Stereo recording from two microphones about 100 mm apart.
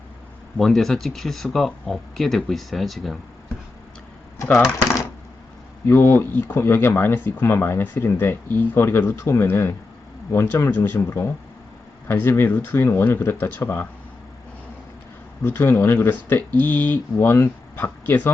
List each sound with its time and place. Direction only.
0.5 s speech: 5° left (ahead or behind)
5.8 s speech: 25° left (ahead or behind)
15.4 s speech: 25° left (ahead or behind)